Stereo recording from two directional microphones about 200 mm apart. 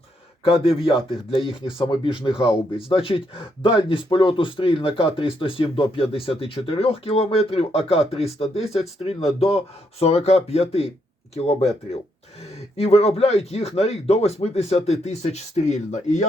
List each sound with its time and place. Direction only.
0.4 s speech: 25° left (ahead or behind)
10.0 s speech: 30° left (ahead or behind)